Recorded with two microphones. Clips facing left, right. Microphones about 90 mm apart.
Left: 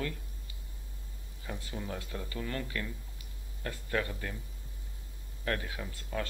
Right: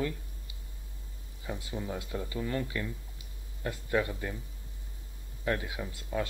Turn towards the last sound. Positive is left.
turn(degrees=-15)  # may be behind; listen again after turning